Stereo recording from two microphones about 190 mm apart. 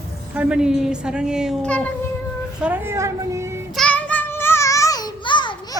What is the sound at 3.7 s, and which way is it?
Child singing, 5° left (ahead or behind).